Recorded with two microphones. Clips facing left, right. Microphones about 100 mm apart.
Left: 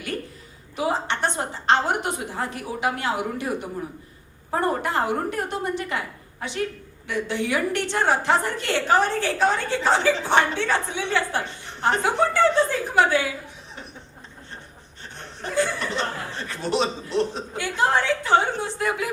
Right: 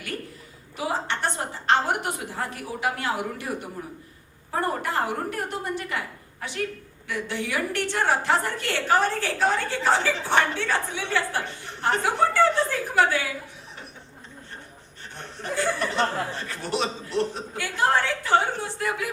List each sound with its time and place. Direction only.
0.8 s a woman's voice: 20° left (ahead or behind)
15.9 s a woman's voice: 20° left (ahead or behind)